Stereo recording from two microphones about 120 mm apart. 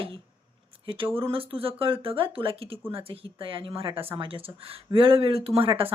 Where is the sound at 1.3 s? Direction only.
50° right (ahead or behind).